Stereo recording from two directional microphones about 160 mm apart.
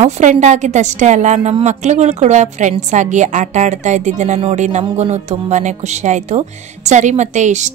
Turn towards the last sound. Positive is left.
turn(degrees=-50)  # may be behind; listen again after turning